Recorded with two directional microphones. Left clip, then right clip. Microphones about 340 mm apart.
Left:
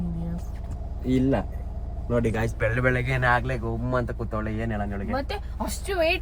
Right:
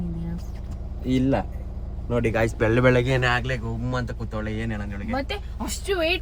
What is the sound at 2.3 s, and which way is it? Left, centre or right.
Speech, centre.